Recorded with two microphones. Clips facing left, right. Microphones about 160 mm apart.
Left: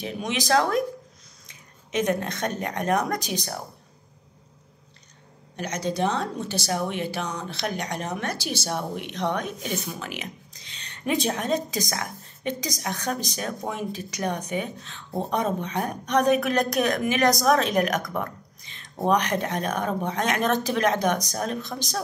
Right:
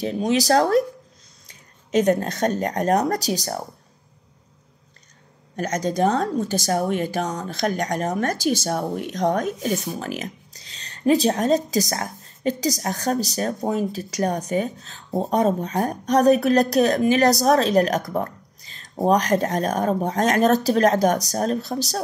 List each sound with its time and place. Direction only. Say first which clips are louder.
0.0 s speech: right 8 dB; 35° right (ahead or behind)
5.6 s speech: right 5 dB; 45° right (ahead or behind)